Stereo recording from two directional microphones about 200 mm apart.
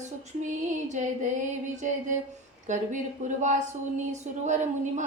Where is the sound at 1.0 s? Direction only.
35° right (ahead or behind).